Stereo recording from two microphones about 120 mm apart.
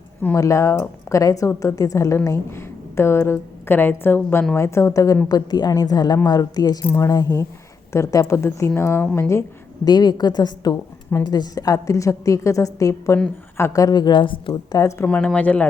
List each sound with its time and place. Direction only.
0.3 s a woman's voice: 25° left (ahead or behind)
9.8 s a woman's voice: 35° left (ahead or behind)
15.0 s speech: 10° left (ahead or behind)